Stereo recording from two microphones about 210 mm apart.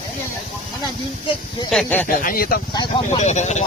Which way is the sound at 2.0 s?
40° left (ahead or behind).